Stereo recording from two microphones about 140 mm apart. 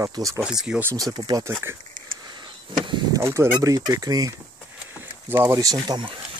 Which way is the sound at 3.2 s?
20° right (ahead or behind).